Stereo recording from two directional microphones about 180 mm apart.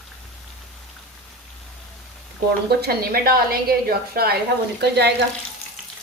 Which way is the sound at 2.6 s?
60° right (ahead or behind).